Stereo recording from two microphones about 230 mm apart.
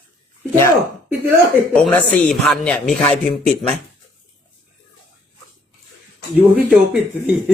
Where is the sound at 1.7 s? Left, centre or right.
Centre.